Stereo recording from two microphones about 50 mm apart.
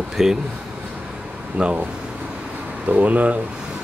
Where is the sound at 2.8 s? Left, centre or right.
Right.